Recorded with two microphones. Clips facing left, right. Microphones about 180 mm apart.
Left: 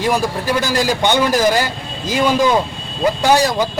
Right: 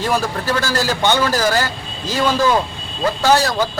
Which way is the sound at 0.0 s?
15° left (ahead or behind).